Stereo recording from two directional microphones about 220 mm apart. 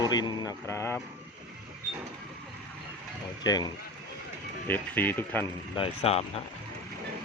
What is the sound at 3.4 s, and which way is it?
Speech, 20° left (ahead or behind).